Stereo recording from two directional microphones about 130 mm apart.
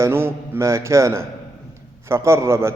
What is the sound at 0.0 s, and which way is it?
A man's voice, 20° right (ahead or behind).